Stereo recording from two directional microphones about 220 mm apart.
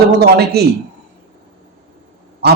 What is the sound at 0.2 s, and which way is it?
Speech, 45° right (ahead or behind).